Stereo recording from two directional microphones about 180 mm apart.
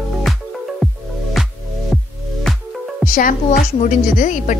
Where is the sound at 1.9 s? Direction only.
Centre (ahead or behind).